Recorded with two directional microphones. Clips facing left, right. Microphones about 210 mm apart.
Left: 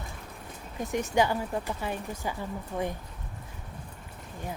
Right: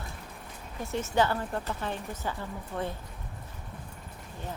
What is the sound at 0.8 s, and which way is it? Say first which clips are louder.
Speech: left 1 dB; 15° left (ahead or behind).